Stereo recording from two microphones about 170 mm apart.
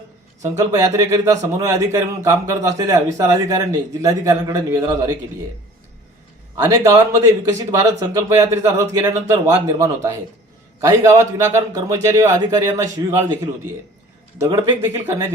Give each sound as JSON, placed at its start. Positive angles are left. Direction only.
{"t": 0.4, "sound": "speech", "side_deg": -20}
{"t": 6.7, "sound": "speech", "side_deg": -20}